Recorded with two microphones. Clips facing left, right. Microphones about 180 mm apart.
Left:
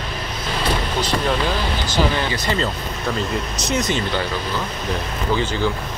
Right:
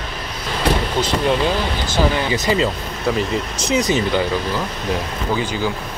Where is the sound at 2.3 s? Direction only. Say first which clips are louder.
Right 4 dB; 15° right (ahead or behind).